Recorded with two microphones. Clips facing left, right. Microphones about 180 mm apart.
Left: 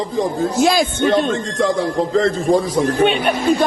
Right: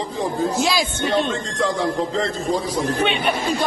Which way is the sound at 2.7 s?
50° left (ahead or behind).